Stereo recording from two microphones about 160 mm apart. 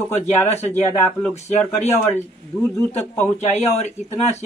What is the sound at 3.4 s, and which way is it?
Speech, 45° left (ahead or behind).